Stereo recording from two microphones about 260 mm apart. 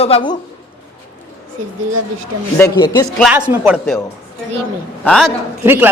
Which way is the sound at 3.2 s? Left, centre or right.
Centre.